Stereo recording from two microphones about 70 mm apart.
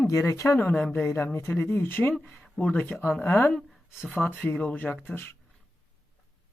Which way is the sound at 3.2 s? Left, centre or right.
Left.